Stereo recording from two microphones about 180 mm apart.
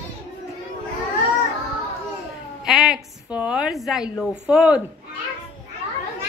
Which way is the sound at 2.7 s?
Centre (ahead or behind).